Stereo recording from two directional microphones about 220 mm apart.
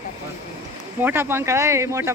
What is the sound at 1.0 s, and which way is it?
Speech, 10° right (ahead or behind).